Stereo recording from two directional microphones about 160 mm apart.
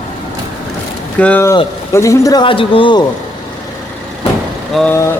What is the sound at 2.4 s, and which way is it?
Speech, 35° left (ahead or behind).